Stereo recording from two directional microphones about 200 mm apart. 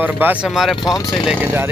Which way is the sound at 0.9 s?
15° left (ahead or behind).